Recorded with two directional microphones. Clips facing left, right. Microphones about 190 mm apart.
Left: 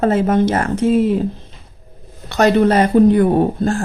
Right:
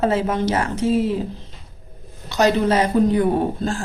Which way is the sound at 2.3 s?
60° left (ahead or behind).